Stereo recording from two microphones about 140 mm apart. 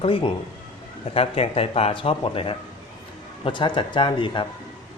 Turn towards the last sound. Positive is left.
turn(degrees=35)  # may be behind; listen again after turning